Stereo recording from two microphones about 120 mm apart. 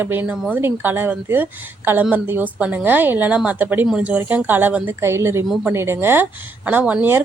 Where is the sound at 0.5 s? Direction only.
15° right (ahead or behind).